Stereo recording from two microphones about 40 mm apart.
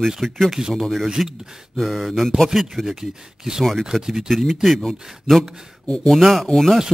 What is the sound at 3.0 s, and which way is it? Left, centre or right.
Speech, centre.